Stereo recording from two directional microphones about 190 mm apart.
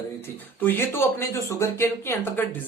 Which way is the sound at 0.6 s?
10° left (ahead or behind).